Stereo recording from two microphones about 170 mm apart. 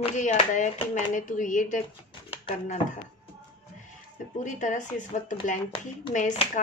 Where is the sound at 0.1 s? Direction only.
45° left (ahead or behind).